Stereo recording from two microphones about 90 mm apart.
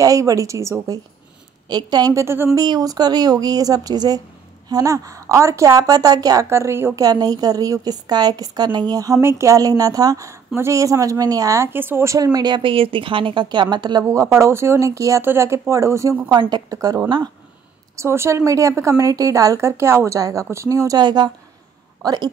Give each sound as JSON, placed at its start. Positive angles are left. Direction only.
{"t": 0.0, "sound": "a woman's voice", "side_deg": -40}
{"t": 1.7, "sound": "a woman's voice", "side_deg": -50}
{"t": 2.1, "sound": "a woman's voice", "side_deg": -25}
{"t": 2.5, "sound": "a woman's voice", "side_deg": -45}
{"t": 6.5, "sound": "a woman's voice", "side_deg": -30}
{"t": 7.0, "sound": "a woman's voice", "side_deg": -45}
{"t": 14.0, "sound": "a woman's voice", "side_deg": -35}
{"t": 16.3, "sound": "a woman's voice", "side_deg": -55}
{"t": 16.7, "sound": "a woman's voice", "side_deg": -40}
{"t": 20.2, "sound": "a woman's voice", "side_deg": -40}